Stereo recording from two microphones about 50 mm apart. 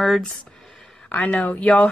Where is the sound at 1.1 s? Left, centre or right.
Left.